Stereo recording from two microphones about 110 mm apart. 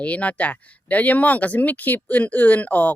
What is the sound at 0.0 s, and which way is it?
Speech, 10° left (ahead or behind).